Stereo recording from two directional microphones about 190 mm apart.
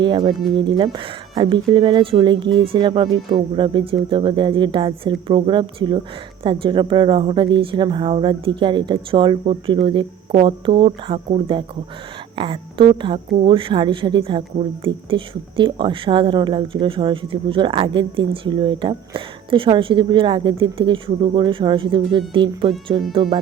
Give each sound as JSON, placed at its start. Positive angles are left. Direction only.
{"t": 0.0, "sound": "speech", "side_deg": -25}